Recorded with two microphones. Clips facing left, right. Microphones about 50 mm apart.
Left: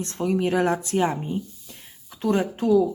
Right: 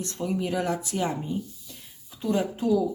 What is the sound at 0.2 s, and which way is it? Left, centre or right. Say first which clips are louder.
Speech: left 6 dB; left.